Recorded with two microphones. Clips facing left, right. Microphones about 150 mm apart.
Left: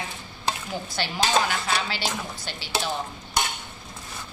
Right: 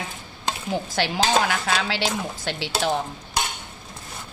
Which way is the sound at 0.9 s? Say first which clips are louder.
Right 2 dB; 85° right.